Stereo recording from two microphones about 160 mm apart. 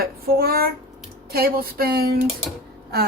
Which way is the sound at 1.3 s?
75° right (ahead or behind).